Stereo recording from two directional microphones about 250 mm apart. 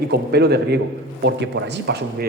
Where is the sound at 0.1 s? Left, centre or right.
Right.